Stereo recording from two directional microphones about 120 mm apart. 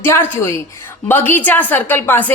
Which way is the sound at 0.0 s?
20° left (ahead or behind).